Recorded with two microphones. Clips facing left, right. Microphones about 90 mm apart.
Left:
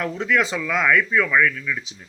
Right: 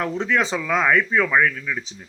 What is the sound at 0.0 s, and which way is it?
A man's voice, 25° right (ahead or behind).